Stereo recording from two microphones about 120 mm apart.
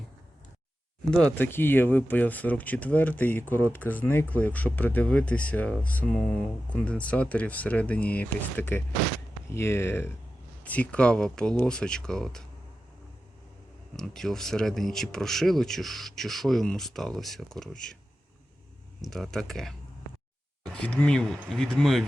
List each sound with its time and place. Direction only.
1.1 s speech: 10° left (ahead or behind)
13.9 s speech: 5° left (ahead or behind)
19.0 s speech: centre (ahead or behind)
20.7 s speech: 10° left (ahead or behind)